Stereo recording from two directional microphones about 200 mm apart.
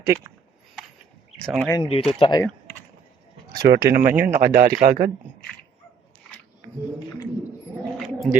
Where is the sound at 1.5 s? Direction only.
5° left (ahead or behind).